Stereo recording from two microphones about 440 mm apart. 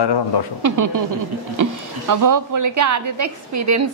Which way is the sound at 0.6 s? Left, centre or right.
Right.